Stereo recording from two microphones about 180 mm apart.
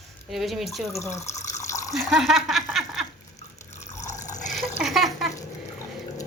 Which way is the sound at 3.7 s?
40° left (ahead or behind).